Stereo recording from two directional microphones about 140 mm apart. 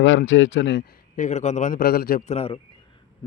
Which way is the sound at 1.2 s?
55° left (ahead or behind).